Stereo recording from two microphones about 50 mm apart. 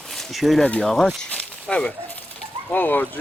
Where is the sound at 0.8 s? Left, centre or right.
Centre.